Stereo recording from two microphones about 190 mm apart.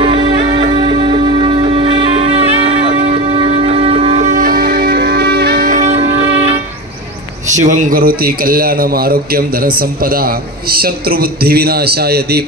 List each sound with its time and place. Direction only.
0.0 s music: 30° right (ahead or behind)
6.3 s train: 35° right (ahead or behind)
7.6 s a man's voice: 45° right (ahead or behind)